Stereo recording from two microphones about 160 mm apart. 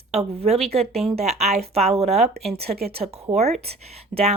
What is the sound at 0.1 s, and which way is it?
A woman's voice, 40° right (ahead or behind).